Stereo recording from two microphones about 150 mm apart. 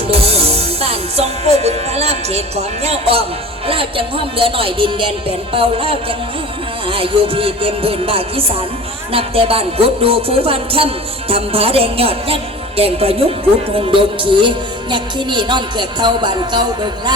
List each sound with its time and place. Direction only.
0.1 s music: 40° right (ahead or behind)